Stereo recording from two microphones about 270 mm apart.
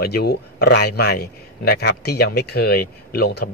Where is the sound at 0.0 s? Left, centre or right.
Left.